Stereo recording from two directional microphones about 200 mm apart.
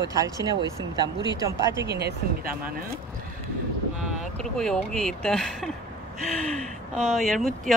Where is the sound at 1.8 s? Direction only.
50° right (ahead or behind).